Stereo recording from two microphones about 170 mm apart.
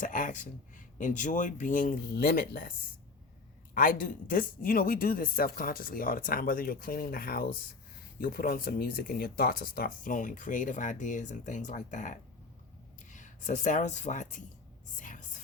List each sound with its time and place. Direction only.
0.0 s speech: 50° left (ahead or behind)
3.8 s speech: 55° left (ahead or behind)